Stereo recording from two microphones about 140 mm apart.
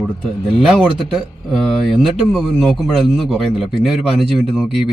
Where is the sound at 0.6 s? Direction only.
Centre (ahead or behind).